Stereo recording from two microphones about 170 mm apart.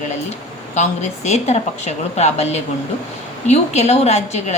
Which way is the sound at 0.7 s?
40° left (ahead or behind).